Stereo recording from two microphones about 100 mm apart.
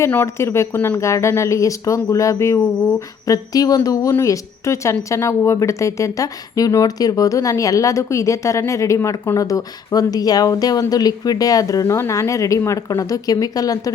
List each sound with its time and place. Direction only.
0.0 s speech: 25° left (ahead or behind)